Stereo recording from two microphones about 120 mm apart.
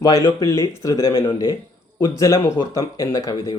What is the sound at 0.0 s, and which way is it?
Speech, 30° left (ahead or behind).